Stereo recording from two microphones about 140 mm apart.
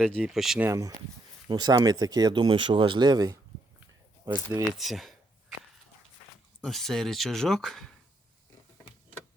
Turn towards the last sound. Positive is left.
turn(degrees=5)  # may be behind; listen again after turning